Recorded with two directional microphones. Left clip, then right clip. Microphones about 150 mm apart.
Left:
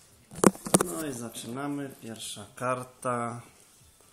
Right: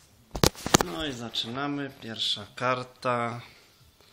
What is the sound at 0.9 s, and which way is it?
Speech, 15° right (ahead or behind).